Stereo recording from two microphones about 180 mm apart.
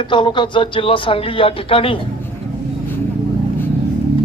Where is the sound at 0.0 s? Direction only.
25° left (ahead or behind).